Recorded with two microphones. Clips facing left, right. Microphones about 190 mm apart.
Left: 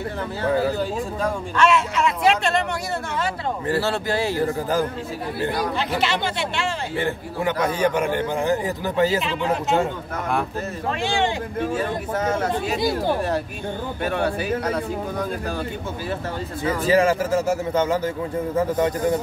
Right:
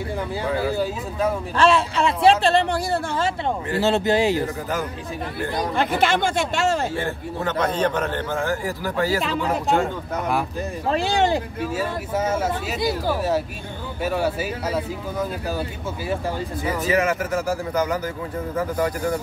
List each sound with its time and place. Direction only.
1.6 s speech: 30° right (ahead or behind)
3.8 s speech: 20° right (ahead or behind)
5.8 s speech: 50° right (ahead or behind)
7.6 s a man's voice: 10° left (ahead or behind)
10.9 s speech: 35° right (ahead or behind)
11.7 s speech: 5° right (ahead or behind)
16.8 s a man's voice: 30° left (ahead or behind)